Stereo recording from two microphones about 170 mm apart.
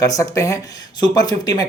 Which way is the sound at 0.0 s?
20° left (ahead or behind).